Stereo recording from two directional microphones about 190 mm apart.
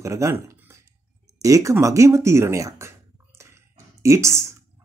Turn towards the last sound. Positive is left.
turn(degrees=-15)  # may be behind; listen again after turning